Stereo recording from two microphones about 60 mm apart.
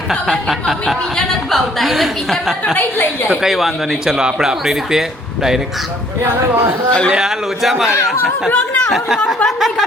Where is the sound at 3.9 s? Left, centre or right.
Centre.